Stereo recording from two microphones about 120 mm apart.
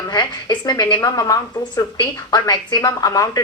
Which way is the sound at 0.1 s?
35° left (ahead or behind).